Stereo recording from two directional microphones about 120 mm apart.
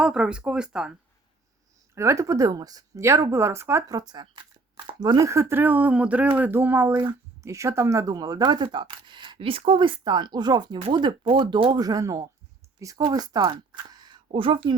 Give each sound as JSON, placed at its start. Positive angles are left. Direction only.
{"t": 0.0, "sound": "speech", "side_deg": -5}
{"t": 2.0, "sound": "a woman's voice", "side_deg": -25}